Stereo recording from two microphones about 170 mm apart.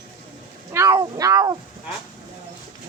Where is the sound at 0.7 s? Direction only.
15° right (ahead or behind).